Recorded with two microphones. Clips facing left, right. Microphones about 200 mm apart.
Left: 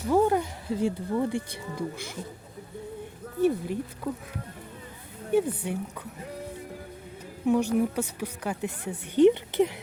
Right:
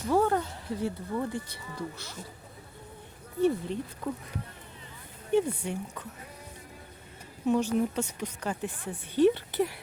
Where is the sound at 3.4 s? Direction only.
5° left (ahead or behind).